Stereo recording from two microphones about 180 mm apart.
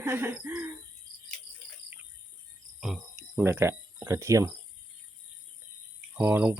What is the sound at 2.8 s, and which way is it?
Speech, centre (ahead or behind).